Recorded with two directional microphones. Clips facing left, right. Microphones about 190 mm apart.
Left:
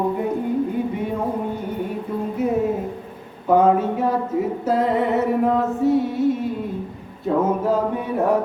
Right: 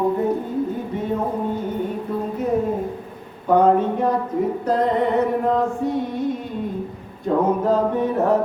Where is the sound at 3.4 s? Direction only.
5° left (ahead or behind).